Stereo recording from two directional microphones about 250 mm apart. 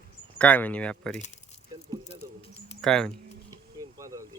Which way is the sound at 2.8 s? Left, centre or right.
Centre.